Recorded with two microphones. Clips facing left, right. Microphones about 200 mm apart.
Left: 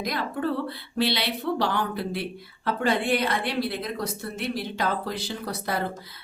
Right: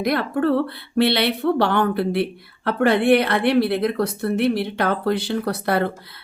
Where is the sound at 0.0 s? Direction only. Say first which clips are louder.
Right 8 dB; 60° right (ahead or behind).